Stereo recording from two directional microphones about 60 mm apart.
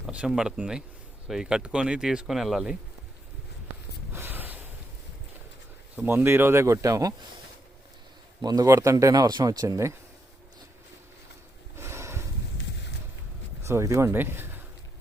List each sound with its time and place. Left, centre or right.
0.1 s speech: centre
4.1 s snort: right
6.2 s speech: right
6.7 s speech: right
8.6 s speech: right
11.8 s a sound: right
13.6 s a sound: right
13.8 s speech: right
14.2 s speech: right